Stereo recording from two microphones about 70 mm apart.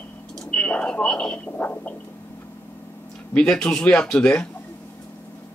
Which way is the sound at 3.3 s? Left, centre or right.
Centre.